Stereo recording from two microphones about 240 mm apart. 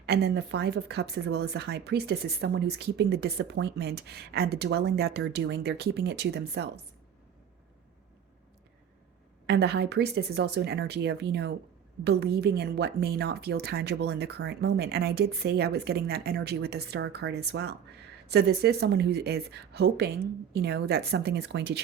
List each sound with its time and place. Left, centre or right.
0.0 s speech: right
9.5 s speech: right